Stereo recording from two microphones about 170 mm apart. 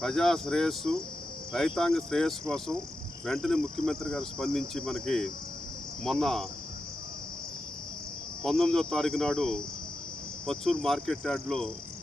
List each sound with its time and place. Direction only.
0.0 s cricket: 5° left (ahead or behind)
8.4 s cricket: centre (ahead or behind)